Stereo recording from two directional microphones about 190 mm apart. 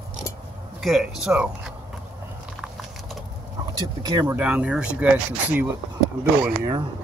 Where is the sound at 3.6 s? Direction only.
20° right (ahead or behind).